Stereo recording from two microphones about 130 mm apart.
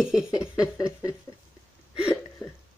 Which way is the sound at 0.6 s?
25° left (ahead or behind).